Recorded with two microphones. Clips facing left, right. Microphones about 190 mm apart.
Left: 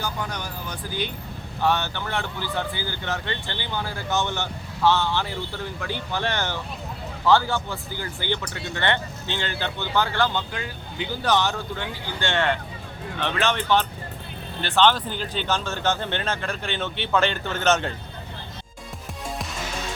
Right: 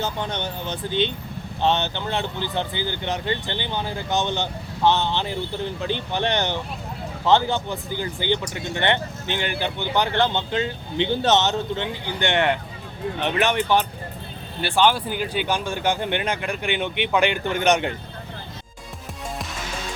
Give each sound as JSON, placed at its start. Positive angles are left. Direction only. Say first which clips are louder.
{"t": 0.0, "sound": "speech", "louder": "right 4 dB", "side_deg": -25}